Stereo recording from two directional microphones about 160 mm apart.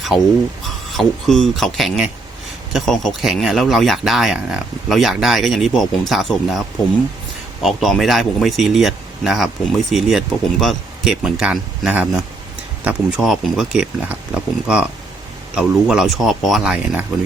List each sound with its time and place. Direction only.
0.1 s speech: 30° left (ahead or behind)
0.9 s speech: centre (ahead or behind)